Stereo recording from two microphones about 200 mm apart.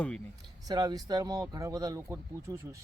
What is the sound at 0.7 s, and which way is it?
Speech, 20° right (ahead or behind).